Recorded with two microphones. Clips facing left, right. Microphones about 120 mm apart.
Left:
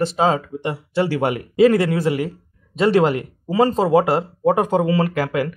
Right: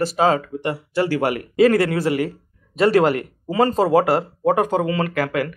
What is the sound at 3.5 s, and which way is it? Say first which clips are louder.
Speech: left 1 dB; 5° left (ahead or behind).